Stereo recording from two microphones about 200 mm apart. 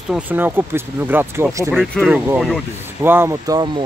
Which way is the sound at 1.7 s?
Centre (ahead or behind).